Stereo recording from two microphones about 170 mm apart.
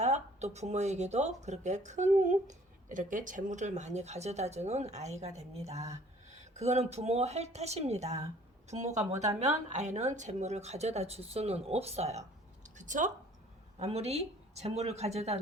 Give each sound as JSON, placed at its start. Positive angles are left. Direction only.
{"t": 0.0, "sound": "a woman's voice", "side_deg": -40}